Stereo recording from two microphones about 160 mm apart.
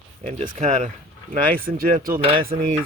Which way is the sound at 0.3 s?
50° right (ahead or behind).